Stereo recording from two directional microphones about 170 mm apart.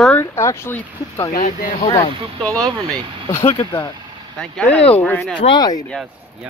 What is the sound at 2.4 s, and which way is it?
Speech, 5° left (ahead or behind).